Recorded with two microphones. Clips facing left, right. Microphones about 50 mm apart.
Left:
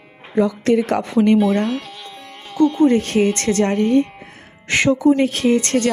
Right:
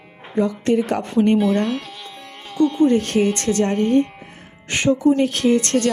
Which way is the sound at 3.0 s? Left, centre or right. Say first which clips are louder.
Left 1 dB; left.